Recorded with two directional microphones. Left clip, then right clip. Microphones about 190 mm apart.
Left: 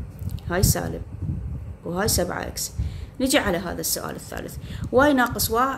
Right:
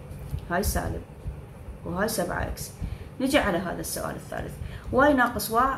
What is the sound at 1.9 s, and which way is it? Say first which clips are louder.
Speech: left 3 dB; 45° left (ahead or behind).